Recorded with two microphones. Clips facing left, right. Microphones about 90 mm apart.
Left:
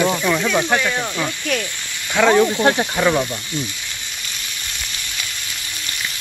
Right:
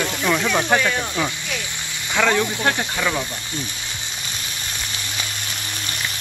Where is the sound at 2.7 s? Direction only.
20° left (ahead or behind).